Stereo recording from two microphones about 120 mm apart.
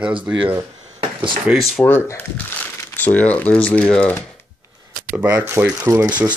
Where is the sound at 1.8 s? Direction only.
15° left (ahead or behind).